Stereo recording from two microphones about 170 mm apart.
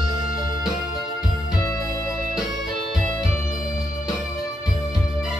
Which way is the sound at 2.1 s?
Centre (ahead or behind).